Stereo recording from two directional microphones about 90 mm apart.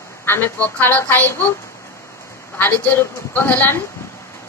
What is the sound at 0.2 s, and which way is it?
A woman's voice, 25° left (ahead or behind).